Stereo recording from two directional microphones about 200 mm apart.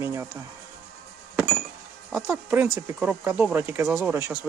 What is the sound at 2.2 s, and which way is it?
Speech, 10° right (ahead or behind).